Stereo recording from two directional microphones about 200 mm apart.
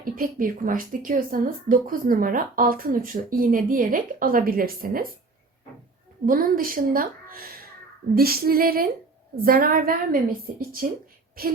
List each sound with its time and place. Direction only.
0.0 s speech: 45° right (ahead or behind)
6.2 s speech: 45° right (ahead or behind)